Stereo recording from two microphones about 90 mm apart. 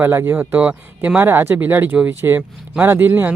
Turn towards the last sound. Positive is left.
turn(degrees=-25)  # may be behind; listen again after turning